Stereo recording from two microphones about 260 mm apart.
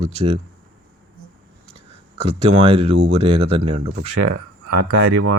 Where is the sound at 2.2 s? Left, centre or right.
Right.